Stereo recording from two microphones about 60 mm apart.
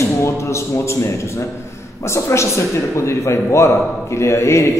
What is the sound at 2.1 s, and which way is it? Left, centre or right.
A man's voice, left.